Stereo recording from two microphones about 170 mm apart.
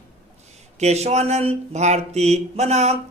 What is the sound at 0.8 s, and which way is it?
Speech, 40° right (ahead or behind).